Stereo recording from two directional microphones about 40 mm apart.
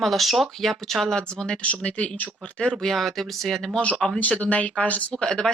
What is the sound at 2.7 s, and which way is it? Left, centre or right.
Speech, centre.